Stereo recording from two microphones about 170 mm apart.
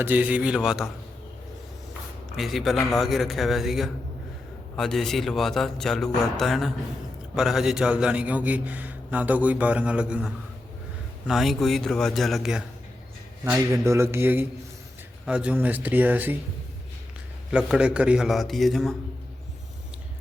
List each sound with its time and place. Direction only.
0.0 s a man's voice: 10° right (ahead or behind)
2.3 s a man's voice: centre (ahead or behind)
13.4 s a man's voice: 15° right (ahead or behind)
17.5 s a man's voice: 5° right (ahead or behind)